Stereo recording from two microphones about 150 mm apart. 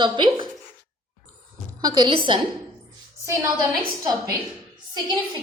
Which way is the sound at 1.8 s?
30° right (ahead or behind).